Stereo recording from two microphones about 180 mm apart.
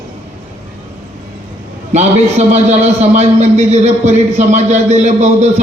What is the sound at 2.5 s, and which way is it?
Speech, 40° right (ahead or behind).